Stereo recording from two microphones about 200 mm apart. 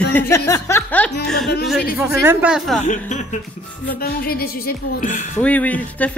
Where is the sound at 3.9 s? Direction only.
50° left (ahead or behind).